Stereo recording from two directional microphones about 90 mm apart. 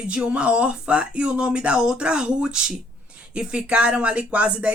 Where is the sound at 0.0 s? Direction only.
10° right (ahead or behind).